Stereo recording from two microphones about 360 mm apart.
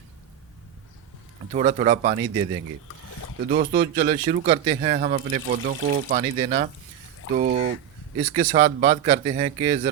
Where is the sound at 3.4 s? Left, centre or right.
Right.